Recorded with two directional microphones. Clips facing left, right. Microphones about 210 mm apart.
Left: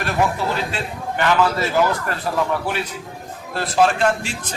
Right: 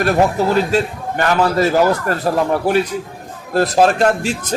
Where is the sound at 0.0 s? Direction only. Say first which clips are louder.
Right 6 dB; 40° right (ahead or behind).